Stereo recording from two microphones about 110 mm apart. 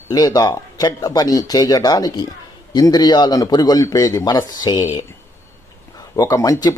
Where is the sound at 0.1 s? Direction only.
30° left (ahead or behind).